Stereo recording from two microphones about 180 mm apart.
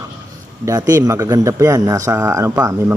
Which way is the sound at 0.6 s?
20° right (ahead or behind).